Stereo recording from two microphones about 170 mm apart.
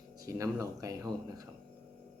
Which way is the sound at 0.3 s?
20° right (ahead or behind).